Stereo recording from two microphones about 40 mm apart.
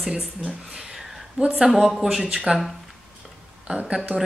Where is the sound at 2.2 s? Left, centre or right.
Centre.